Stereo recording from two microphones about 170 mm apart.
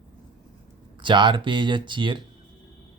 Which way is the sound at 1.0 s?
30° right (ahead or behind).